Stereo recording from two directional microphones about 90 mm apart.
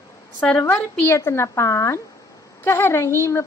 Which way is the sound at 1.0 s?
30° left (ahead or behind).